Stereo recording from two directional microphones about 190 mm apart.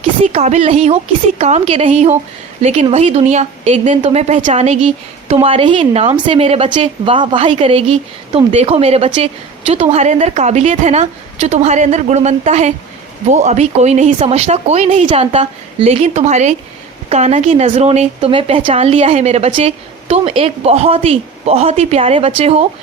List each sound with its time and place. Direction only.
0.2 s a woman's voice: 35° right (ahead or behind)